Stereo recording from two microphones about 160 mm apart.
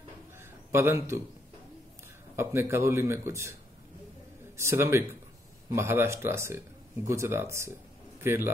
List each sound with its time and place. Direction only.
0.4 s a sound: 15° right (ahead or behind)
2.3 s speech: 15° right (ahead or behind)
4.6 s a man's voice: 15° right (ahead or behind)